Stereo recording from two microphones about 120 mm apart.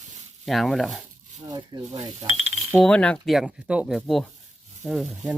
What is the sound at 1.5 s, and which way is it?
Speech, 35° right (ahead or behind).